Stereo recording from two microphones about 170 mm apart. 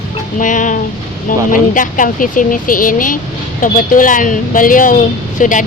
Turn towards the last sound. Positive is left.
turn(degrees=50)  # may be behind; listen again after turning